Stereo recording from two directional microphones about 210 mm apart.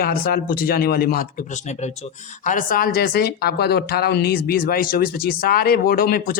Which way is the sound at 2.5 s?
40° left (ahead or behind).